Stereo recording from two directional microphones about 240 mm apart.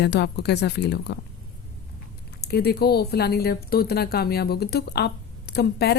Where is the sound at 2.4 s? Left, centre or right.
Left.